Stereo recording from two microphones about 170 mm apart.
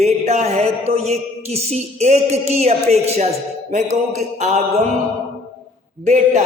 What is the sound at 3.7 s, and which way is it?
Music, 45° right (ahead or behind).